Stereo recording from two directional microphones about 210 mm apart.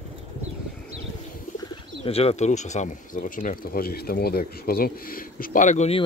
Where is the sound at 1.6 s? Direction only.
30° left (ahead or behind).